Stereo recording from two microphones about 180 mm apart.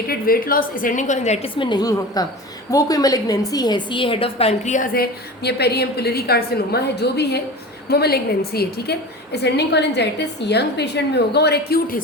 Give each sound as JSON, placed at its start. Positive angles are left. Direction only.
{"t": 0.1, "sound": "a woman's voice", "side_deg": 55}